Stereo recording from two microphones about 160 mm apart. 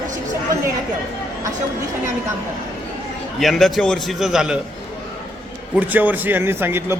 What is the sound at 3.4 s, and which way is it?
A man's voice, centre (ahead or behind).